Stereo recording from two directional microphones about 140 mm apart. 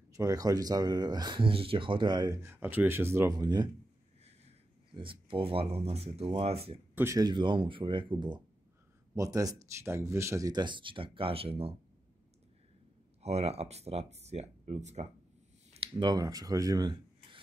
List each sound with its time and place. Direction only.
0.1 s speech: 25° right (ahead or behind)
2.4 s speech: 15° right (ahead or behind); by 3.7 s 30° right (ahead or behind)
4.9 s speech: 35° right (ahead or behind)
7.0 s speech: 20° right (ahead or behind)
7.2 s speech: 35° right (ahead or behind)
9.1 s speech: 25° right (ahead or behind); by 11.7 s 45° right (ahead or behind)
13.2 s speech: 50° right (ahead or behind)
15.7 s speech: 40° right (ahead or behind)